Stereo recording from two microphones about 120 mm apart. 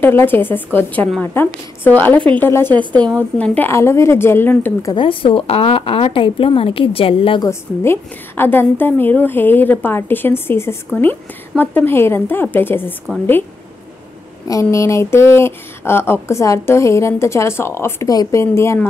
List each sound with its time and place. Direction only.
0.0 s a woman's voice: 20° left (ahead or behind)
4.9 s a woman's voice: 45° left (ahead or behind)
7.4 s a woman's voice: 20° left (ahead or behind)
14.5 s speech: 25° left (ahead or behind)